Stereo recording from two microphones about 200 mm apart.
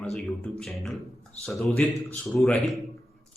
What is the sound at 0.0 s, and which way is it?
Speech, centre (ahead or behind).